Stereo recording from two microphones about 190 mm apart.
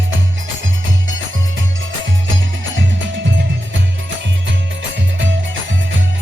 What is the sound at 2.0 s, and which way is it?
Music, 80° right.